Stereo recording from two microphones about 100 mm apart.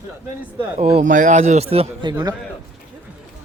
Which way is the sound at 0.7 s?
90° right.